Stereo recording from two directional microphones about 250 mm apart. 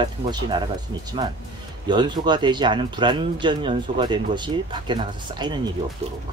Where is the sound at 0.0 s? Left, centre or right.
Centre.